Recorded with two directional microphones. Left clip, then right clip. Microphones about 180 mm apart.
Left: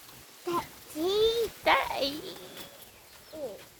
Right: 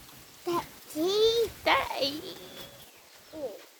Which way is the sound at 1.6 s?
Centre (ahead or behind).